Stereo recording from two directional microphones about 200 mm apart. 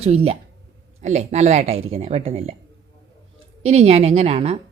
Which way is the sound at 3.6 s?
30° right (ahead or behind).